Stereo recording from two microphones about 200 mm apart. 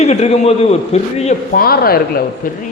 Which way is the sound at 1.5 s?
50° left (ahead or behind).